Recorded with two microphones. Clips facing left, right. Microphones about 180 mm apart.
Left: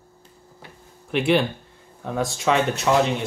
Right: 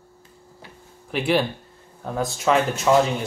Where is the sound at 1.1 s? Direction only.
Centre (ahead or behind).